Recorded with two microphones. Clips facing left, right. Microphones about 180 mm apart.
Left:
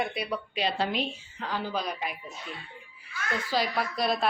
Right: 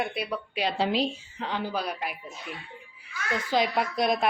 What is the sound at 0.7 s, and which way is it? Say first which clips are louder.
Speech: right 4 dB; 25° right (ahead or behind).